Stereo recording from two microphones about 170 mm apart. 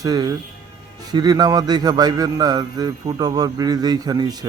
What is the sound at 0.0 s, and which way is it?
Speech, 20° right (ahead or behind).